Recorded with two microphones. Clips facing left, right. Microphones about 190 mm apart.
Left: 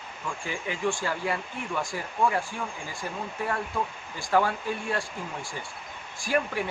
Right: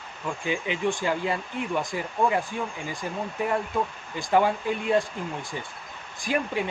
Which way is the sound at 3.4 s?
20° right (ahead or behind).